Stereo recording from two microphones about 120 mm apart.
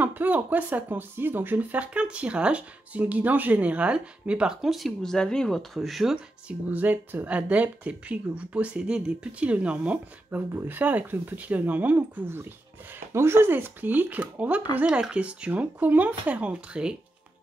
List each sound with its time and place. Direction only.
0.0 s speech: 15° right (ahead or behind)
6.7 s speech: 15° right (ahead or behind)